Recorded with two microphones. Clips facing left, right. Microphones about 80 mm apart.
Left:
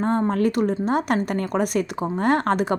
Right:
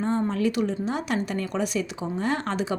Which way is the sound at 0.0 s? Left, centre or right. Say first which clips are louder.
Left 4 dB; left.